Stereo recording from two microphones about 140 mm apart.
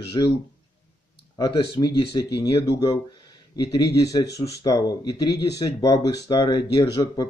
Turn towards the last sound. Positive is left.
turn(degrees=25)  # may be behind; listen again after turning